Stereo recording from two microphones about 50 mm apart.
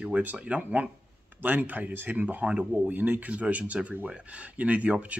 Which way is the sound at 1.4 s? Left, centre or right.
Right.